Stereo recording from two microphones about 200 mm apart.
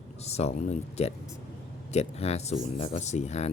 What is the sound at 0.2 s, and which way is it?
Speech, 30° left (ahead or behind).